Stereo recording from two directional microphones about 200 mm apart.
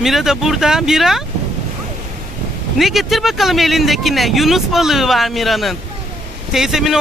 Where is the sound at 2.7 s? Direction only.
Centre (ahead or behind).